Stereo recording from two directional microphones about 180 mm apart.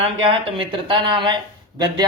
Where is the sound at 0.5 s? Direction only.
25° right (ahead or behind).